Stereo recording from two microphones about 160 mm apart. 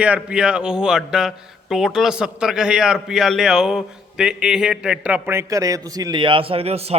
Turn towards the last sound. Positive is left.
turn(degrees=-40)  # may be behind; listen again after turning